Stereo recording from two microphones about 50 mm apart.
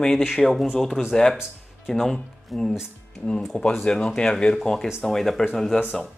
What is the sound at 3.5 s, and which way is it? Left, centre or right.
Speech, left.